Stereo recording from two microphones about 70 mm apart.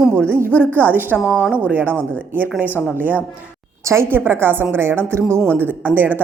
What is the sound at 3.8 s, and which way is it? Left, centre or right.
Speech, right.